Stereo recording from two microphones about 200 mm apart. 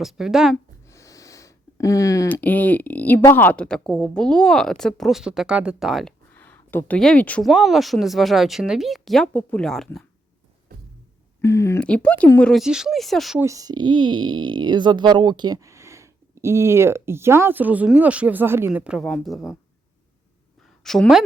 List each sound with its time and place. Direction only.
0.0 s speech: centre (ahead or behind)
0.5 s speech: 15° left (ahead or behind)
10.7 s a sound: 45° right (ahead or behind)
11.3 s speech: 15° left (ahead or behind)
13.4 s speech: 15° right (ahead or behind); by 19.5 s centre (ahead or behind)
20.7 s a woman's voice: centre (ahead or behind)